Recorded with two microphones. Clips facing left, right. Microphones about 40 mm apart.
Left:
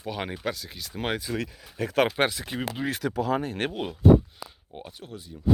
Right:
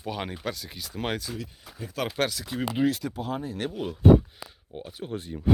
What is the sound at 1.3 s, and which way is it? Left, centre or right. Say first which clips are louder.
Speech: left 7 dB; left.